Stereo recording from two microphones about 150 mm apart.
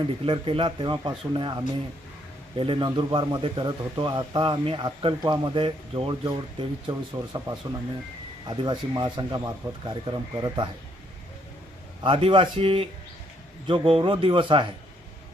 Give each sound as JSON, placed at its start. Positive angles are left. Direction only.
{"t": 0.3, "sound": "speech", "side_deg": -35}
{"t": 8.4, "sound": "speech", "side_deg": -30}
{"t": 12.0, "sound": "speech", "side_deg": -35}